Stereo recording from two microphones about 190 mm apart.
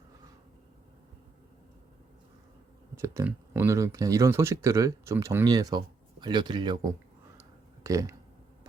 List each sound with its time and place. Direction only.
2.9 s speech: 15° right (ahead or behind)